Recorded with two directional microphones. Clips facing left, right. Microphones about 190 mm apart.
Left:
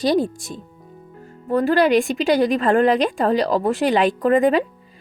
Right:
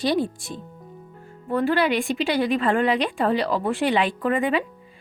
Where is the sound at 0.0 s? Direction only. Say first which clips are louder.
Left 4 dB; 40° left (ahead or behind).